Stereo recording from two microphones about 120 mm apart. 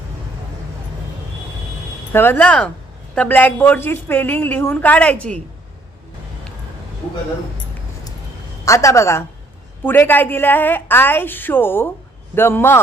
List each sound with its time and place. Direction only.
2.1 s a woman's voice: 20° left (ahead or behind)
8.6 s a woman's voice: 25° left (ahead or behind)